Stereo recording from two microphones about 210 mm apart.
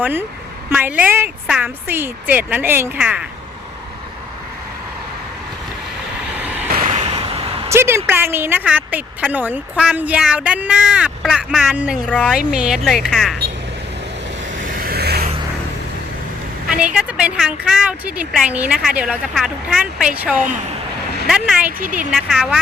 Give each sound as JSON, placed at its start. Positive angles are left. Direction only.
{"t": 0.0, "sound": "a woman's voice", "side_deg": -10}
{"t": 6.3, "sound": "vehicle", "side_deg": -10}
{"t": 6.7, "sound": "a sound", "side_deg": -35}
{"t": 7.0, "sound": "vehicle", "side_deg": -25}
{"t": 7.7, "sound": "a woman's voice", "side_deg": -10}
{"t": 12.0, "sound": "speech", "side_deg": 5}
{"t": 12.4, "sound": "speech", "side_deg": -5}
{"t": 14.6, "sound": "vehicle", "side_deg": -45}
{"t": 16.6, "sound": "speech", "side_deg": -5}